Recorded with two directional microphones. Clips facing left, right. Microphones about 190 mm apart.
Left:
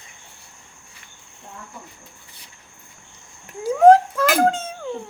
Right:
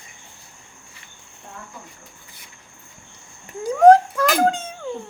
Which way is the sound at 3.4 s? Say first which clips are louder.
Even; 5° left (ahead or behind).